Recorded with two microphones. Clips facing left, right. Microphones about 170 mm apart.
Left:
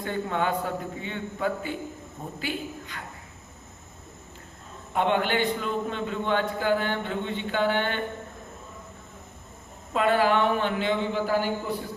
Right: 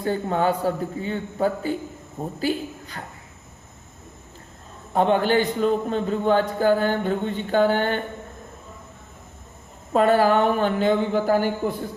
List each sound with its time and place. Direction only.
0.0 s a man's voice: 35° right (ahead or behind)
4.9 s a man's voice: 35° right (ahead or behind)
9.9 s speech: 40° right (ahead or behind)